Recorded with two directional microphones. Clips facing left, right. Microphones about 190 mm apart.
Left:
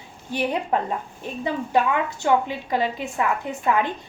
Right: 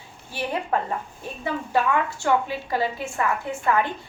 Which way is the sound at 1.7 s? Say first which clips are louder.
Left 1 dB; 20° left (ahead or behind).